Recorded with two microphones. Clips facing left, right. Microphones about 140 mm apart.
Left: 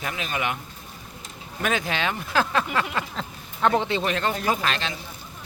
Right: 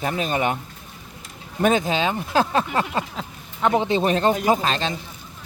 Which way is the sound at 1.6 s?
25° right (ahead or behind).